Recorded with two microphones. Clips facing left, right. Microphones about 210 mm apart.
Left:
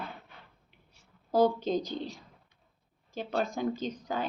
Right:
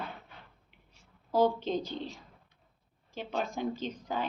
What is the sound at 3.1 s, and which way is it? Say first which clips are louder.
Speech: left 3 dB; 40° left (ahead or behind).